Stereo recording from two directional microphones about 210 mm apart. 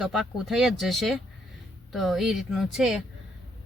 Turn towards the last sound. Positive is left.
turn(degrees=0)  # may be behind; listen again after turning